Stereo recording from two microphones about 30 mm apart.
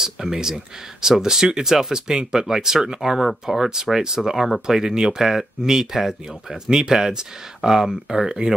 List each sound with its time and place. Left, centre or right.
0.0 s speech: centre